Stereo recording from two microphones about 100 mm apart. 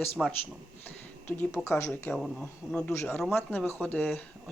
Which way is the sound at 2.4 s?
10° left (ahead or behind).